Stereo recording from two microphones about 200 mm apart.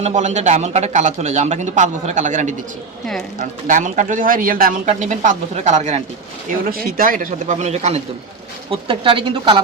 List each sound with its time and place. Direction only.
0.0 s speech: 35° right (ahead or behind)
6.5 s speech: 45° right (ahead or behind); by 9.6 s 25° right (ahead or behind)